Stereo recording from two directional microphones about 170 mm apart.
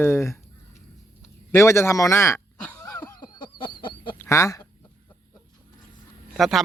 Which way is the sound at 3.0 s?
25° left (ahead or behind).